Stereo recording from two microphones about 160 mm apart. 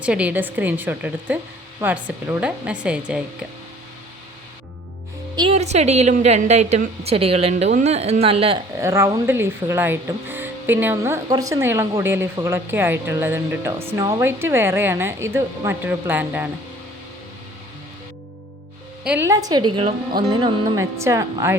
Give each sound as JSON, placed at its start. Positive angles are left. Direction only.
{"t": 0.0, "sound": "speech", "side_deg": -10}
{"t": 5.4, "sound": "a woman's voice", "side_deg": -40}
{"t": 8.8, "sound": "speech", "side_deg": -15}
{"t": 19.0, "sound": "speech", "side_deg": -10}
{"t": 19.3, "sound": "speech", "side_deg": -25}